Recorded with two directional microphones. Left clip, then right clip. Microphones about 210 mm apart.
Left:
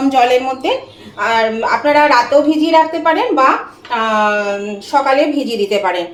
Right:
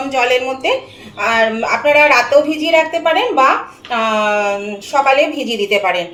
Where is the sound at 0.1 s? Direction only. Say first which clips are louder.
Left 2 dB; 35° left (ahead or behind).